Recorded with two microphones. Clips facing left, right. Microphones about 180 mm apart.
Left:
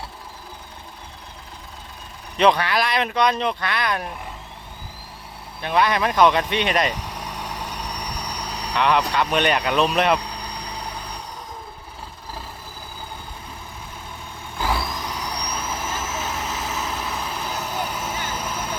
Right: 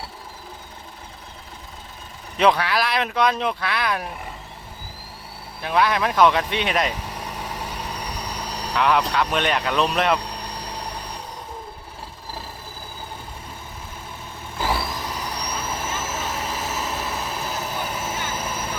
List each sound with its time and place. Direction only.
2.4 s speech: centre (ahead or behind)
5.6 s speech: centre (ahead or behind)
10.5 s vehicle: 5° right (ahead or behind)
14.6 s vehicle: 5° right (ahead or behind)